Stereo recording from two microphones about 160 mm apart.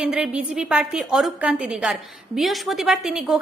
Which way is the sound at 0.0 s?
5° right (ahead or behind).